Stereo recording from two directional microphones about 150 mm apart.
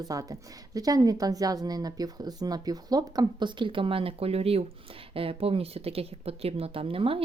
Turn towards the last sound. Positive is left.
turn(degrees=-40)  # may be behind; listen again after turning